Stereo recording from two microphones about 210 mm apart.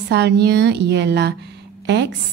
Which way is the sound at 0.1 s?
50° right (ahead or behind).